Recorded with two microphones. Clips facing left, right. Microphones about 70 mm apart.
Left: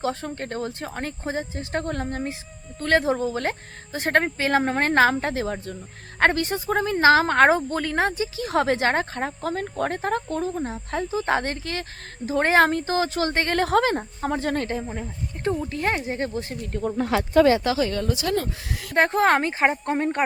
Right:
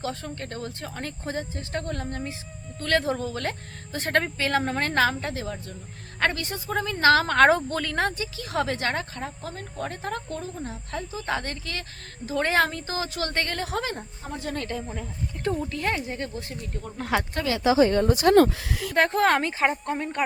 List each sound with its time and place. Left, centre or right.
0.0 s a woman's voice: left
1.3 s speech: left
1.7 s a woman's voice: left
13.5 s a woman's voice: left
14.7 s speech: left
17.4 s speech: left
17.7 s speech: right
18.9 s speech: centre
19.3 s speech: left
19.8 s a woman's voice: left